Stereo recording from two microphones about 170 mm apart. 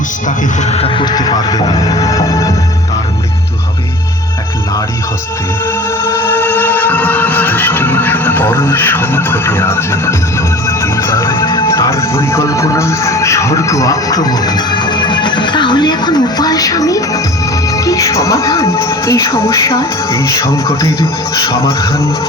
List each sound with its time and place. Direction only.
0.3 s speech: 40° left (ahead or behind); by 2.5 s 20° left (ahead or behind)
6.0 s music: 20° left (ahead or behind)